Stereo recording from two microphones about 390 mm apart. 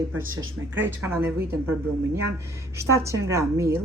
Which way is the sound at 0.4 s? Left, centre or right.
Right.